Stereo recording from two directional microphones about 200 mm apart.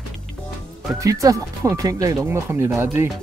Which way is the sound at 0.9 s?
15° right (ahead or behind).